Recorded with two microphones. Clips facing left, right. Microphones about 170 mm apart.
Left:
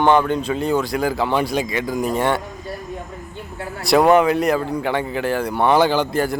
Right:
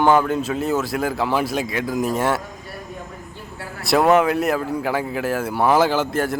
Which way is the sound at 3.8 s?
Centre (ahead or behind).